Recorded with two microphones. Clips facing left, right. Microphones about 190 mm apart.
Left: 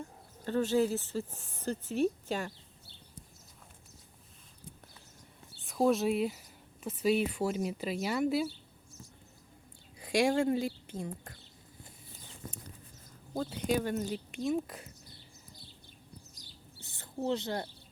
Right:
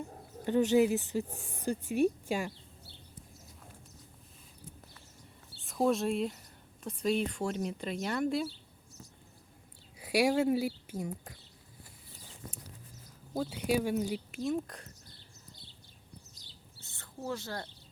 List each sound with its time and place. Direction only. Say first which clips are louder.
0.0 s speech: right 3 dB; 15° right (ahead or behind)
5.6 s speech: left 1 dB; centre (ahead or behind)
10.0 s speech: even; 10° right (ahead or behind)
13.3 s speech: right 1 dB; 5° right (ahead or behind)
16.8 s a sound: left 3 dB; 20° left (ahead or behind)
17.2 s speech: left 5 dB; 20° left (ahead or behind)